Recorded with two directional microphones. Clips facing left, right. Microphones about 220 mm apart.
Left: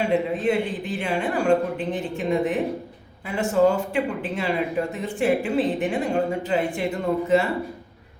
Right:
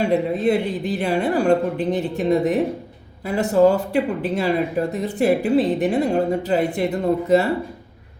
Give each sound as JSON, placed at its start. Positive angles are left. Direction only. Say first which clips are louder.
{"t": 0.0, "sound": "speech", "louder": "right 3 dB", "side_deg": -40}